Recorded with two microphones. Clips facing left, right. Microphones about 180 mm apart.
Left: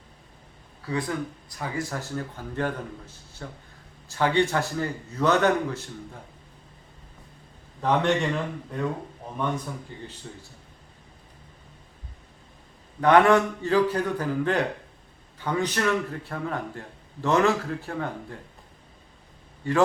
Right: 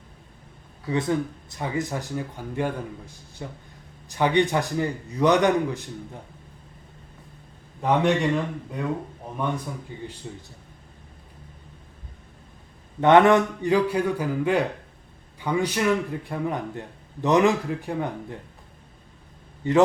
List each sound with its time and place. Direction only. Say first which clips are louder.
0.9 s a man's voice: right 4 dB; 25° right (ahead or behind)
7.8 s a man's voice: right 2 dB; 5° right (ahead or behind)
9.9 s a man's voice: right 4 dB; 10° right (ahead or behind)
13.0 s a man's voice: right 2 dB; 20° right (ahead or behind)
19.6 s a man's voice: right 5 dB; 20° right (ahead or behind)